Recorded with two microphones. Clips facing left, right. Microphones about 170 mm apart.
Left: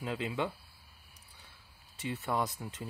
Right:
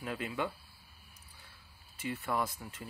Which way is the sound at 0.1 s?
15° left (ahead or behind).